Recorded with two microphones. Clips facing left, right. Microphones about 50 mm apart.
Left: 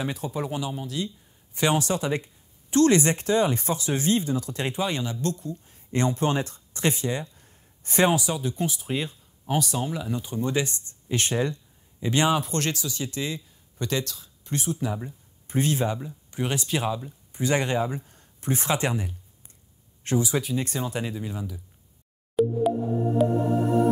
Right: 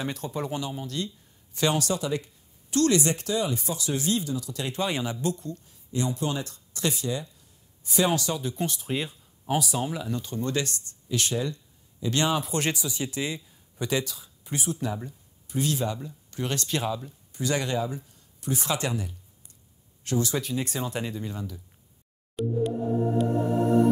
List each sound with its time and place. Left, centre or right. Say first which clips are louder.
0.0 s speech: left 2 dB; centre
1.5 s speech: left 2 dB; left
4.7 s speech: right 2 dB; centre
5.9 s speech: left 4 dB; left
8.1 s speech: left 2 dB; centre
8.4 s speech: left 2 dB; centre
10.0 s speech: left 2 dB; centre
11.1 s speech: left 3 dB; left
12.0 s speech: left 3 dB; left
12.5 s speech: even; centre
15.4 s speech: left 3 dB; left; by 17.1 s centre
17.3 s speech: left 3 dB; left
20.2 s speech: left 2 dB; centre
22.3 s music: left 5 dB; centre